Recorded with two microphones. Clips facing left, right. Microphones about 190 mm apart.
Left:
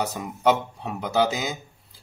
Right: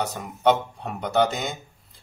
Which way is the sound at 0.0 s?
10° left (ahead or behind).